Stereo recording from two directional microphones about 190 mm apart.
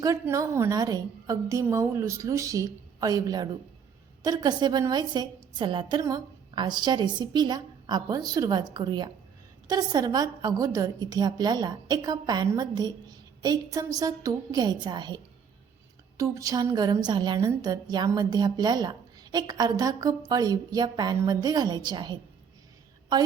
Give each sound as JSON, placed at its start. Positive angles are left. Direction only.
{"t": 0.0, "sound": "a woman's voice", "side_deg": -15}